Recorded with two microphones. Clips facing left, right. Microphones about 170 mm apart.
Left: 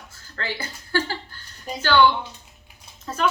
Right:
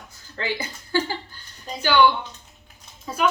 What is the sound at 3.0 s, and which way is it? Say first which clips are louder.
Speech: right 1 dB; 10° right (ahead or behind).